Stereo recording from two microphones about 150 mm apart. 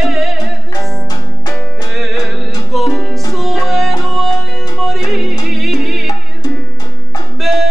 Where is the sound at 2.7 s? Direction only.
Centre (ahead or behind).